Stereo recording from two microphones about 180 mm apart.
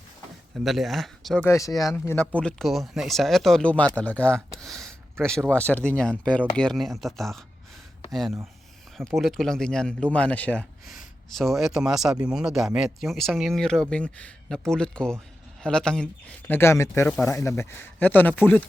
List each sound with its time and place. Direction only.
0.5 s speech: centre (ahead or behind)
1.5 s speech: 15° left (ahead or behind)
2.3 s speech: 5° left (ahead or behind)
4.5 s a sound: centre (ahead or behind)
5.5 s speech: 10° left (ahead or behind)